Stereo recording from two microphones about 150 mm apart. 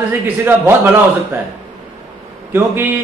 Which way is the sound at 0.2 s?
15° right (ahead or behind).